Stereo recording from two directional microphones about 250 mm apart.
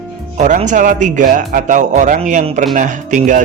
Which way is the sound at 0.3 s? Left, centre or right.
Right.